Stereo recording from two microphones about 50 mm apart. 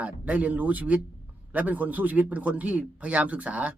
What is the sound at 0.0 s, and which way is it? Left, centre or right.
Speech, right.